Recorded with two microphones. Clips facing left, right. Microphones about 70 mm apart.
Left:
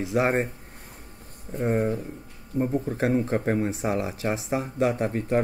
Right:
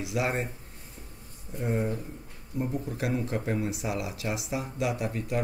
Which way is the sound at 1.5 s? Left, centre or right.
Left.